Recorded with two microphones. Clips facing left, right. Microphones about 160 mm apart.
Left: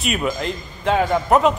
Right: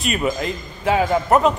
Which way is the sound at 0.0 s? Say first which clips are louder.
Right 1 dB; centre (ahead or behind).